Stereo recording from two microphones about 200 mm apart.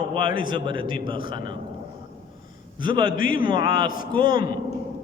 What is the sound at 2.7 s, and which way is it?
Speech, 25° right (ahead or behind).